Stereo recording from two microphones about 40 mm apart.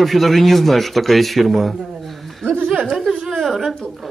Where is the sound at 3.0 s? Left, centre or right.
Centre.